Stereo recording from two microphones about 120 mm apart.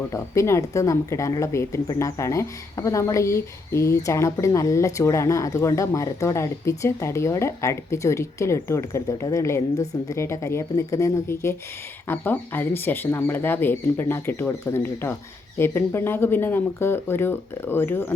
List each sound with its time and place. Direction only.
0.1 s speech: 25° left (ahead or behind)